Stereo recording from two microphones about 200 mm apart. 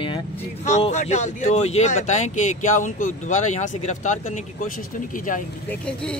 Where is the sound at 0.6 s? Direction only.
35° left (ahead or behind).